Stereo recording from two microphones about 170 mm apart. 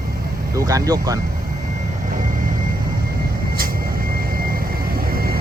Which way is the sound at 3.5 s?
60° right (ahead or behind).